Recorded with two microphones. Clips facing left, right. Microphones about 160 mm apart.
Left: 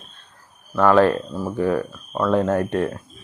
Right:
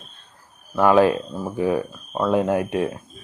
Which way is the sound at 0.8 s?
15° right (ahead or behind).